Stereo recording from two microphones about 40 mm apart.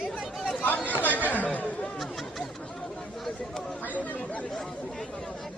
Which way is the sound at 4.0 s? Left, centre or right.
Left.